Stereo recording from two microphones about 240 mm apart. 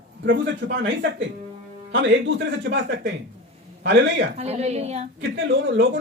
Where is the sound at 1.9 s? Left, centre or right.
Right.